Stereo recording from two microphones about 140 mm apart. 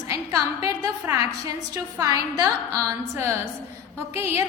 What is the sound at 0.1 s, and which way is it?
A woman's voice, 25° right (ahead or behind).